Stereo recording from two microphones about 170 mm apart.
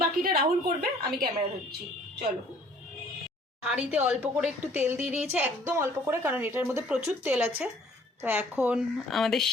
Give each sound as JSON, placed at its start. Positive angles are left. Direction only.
{"t": 0.0, "sound": "a woman's voice", "side_deg": -60}
{"t": 3.6, "sound": "a woman's voice", "side_deg": -5}